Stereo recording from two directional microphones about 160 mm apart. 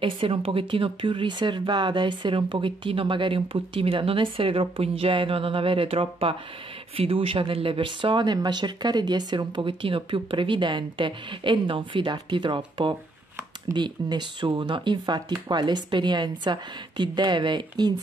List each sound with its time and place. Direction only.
0.0 s speech: 35° right (ahead or behind)